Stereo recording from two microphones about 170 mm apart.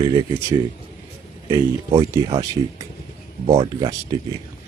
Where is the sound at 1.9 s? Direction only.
20° right (ahead or behind).